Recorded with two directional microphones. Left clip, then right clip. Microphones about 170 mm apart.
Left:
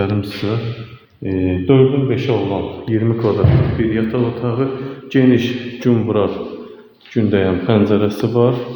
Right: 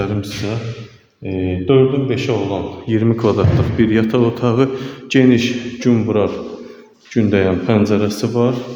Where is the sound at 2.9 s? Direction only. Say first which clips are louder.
Right 2 dB; 15° right (ahead or behind).